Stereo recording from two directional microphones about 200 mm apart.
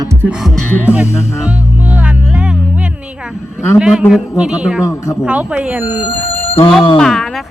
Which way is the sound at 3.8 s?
Centre (ahead or behind).